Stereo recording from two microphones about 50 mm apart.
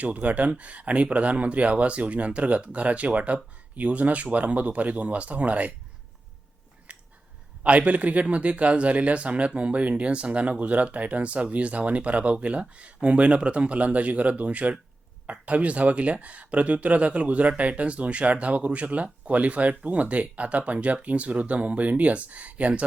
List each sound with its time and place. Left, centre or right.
0.0 s speech: right
7.6 s speech: right